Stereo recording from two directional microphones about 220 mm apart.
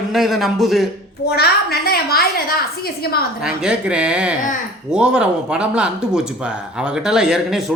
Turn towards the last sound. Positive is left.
turn(degrees=0)  # may be behind; listen again after turning